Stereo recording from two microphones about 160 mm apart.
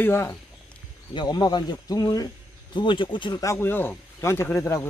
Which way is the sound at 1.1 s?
30° left (ahead or behind).